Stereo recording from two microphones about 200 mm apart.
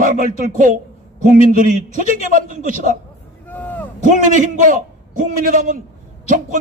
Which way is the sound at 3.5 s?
10° left (ahead or behind).